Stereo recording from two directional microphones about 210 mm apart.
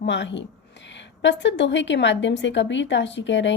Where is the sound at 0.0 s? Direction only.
55° left (ahead or behind).